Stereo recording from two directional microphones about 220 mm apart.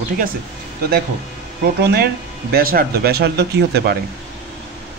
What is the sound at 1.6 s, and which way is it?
Speech, 45° right (ahead or behind).